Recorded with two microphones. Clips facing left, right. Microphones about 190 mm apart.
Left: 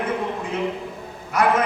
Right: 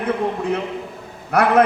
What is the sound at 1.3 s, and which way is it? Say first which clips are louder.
Speech: right 5 dB; 65° right (ahead or behind).